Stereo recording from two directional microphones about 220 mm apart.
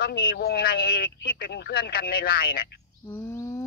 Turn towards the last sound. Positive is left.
turn(degrees=15)  # may be behind; listen again after turning